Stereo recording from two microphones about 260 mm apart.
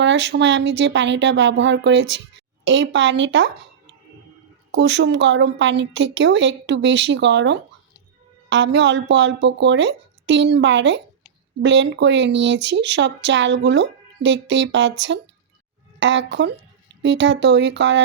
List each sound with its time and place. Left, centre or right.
0.0 s a woman's voice: right
4.7 s a woman's voice: right